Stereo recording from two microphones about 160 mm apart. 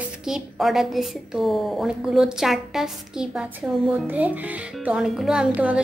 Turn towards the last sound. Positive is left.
turn(degrees=-10)  # may be behind; listen again after turning